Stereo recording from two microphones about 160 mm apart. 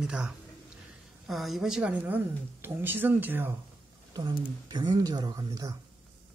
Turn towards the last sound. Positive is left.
turn(degrees=-20)  # may be behind; listen again after turning